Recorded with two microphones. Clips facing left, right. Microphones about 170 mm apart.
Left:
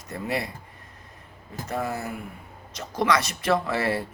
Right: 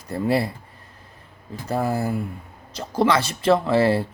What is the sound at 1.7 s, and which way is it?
Speech, 30° right (ahead or behind).